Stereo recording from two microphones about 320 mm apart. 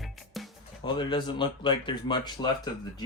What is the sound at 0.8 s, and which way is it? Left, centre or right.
Speech, centre.